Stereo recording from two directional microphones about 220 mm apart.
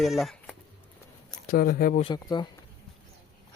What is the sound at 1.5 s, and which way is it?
Speech, 40° left (ahead or behind).